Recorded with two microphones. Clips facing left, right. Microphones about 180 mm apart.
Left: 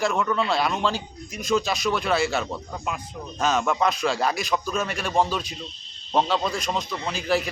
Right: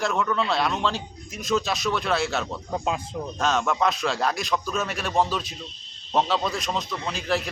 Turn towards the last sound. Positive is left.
turn(degrees=0)  # may be behind; listen again after turning